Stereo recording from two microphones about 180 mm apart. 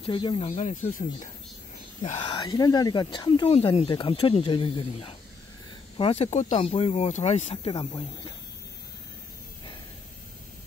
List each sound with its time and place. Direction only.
0.0 s speech: 30° left (ahead or behind)
0.6 s speech: 40° left (ahead or behind)
2.0 s speech: 30° left (ahead or behind)